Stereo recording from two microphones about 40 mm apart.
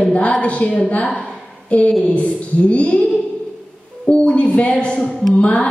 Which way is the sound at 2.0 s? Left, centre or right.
Left.